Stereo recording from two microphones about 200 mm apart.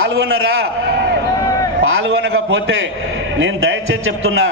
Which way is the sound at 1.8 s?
80° right.